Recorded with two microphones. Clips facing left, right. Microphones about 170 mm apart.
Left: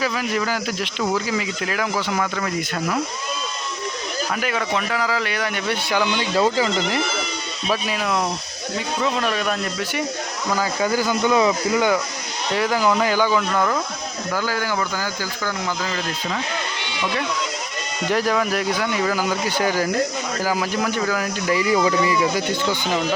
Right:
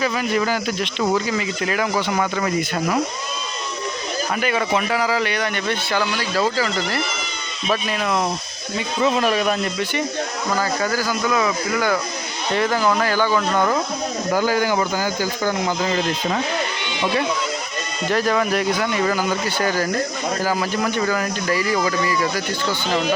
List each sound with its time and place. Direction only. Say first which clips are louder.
0.0 s speech: right 2 dB; centre (ahead or behind)
4.4 s a man's voice: right 4 dB; centre (ahead or behind); by 7.0 s 20° left (ahead or behind)
7.7 s speech: right 1 dB; 5° left (ahead or behind)
10.5 s speech: left 1 dB; 10° left (ahead or behind)
12.5 s a man's voice: even; 10° left (ahead or behind)
13.5 s speech: right 2 dB; centre (ahead or behind)
14.3 s speech: right 5 dB; 15° right (ahead or behind)
18.1 s a man's voice: right 1 dB; 10° left (ahead or behind)
21.5 s speech: left 3 dB; 20° left (ahead or behind)